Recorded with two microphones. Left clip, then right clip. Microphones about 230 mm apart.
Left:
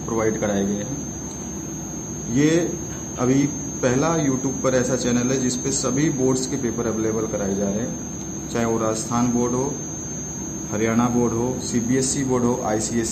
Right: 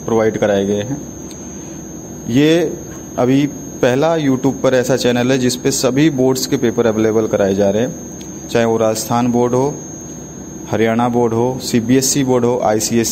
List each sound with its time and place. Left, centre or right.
0.1 s a man's voice: right
2.3 s a man's voice: right
8.5 s a man's voice: right
10.7 s a man's voice: right